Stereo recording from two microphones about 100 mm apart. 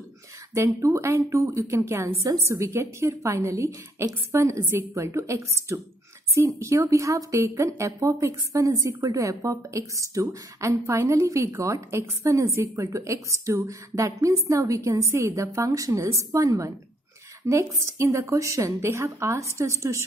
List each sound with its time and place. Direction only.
0.7 s a woman's voice: 25° right (ahead or behind)